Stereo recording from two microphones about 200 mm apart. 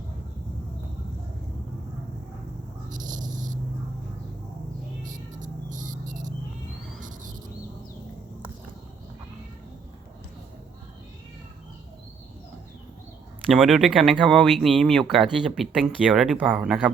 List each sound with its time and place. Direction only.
2.9 s a sound: 40° right (ahead or behind)
5.0 s cricket: 40° right (ahead or behind)
13.5 s speech: centre (ahead or behind)